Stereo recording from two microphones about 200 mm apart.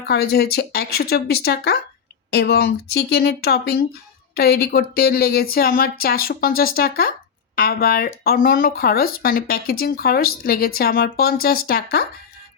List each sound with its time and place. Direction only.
0.1 s speech: 50° left (ahead or behind)